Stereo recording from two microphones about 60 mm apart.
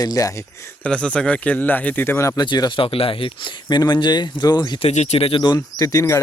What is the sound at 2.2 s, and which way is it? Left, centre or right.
Speech, left.